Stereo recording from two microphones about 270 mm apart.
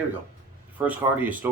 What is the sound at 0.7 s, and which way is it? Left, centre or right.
Speech, centre.